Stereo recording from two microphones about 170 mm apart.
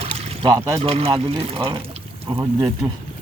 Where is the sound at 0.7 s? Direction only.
35° right (ahead or behind).